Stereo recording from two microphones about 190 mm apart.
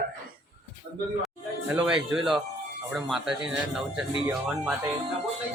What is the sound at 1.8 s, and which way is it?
Speech, 5° right (ahead or behind).